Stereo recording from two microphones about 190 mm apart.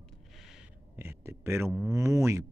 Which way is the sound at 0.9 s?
10° right (ahead or behind).